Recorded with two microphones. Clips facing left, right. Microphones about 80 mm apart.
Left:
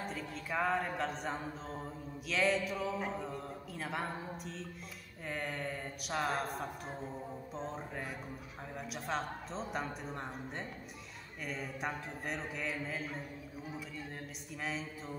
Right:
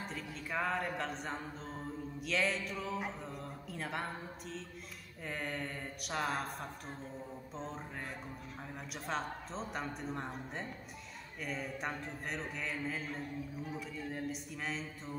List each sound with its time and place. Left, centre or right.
0.0 s speech: centre
9.0 s speech: centre